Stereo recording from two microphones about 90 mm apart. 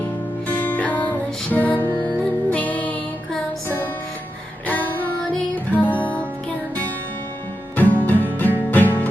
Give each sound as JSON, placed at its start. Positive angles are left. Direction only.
{"t": 0.4, "sound": "music", "side_deg": 20}
{"t": 4.6, "sound": "female singing", "side_deg": 20}
{"t": 5.7, "sound": "music", "side_deg": 15}
{"t": 7.8, "sound": "music", "side_deg": 20}